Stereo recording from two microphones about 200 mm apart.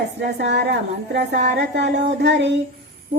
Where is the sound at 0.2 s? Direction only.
60° right (ahead or behind).